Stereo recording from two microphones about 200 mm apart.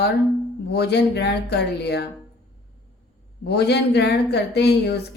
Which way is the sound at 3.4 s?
55° left (ahead or behind).